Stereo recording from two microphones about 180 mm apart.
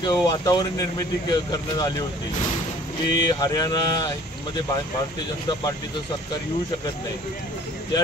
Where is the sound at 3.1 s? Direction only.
20° left (ahead or behind).